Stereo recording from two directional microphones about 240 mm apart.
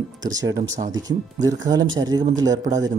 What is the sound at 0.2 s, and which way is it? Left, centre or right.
Speech, centre.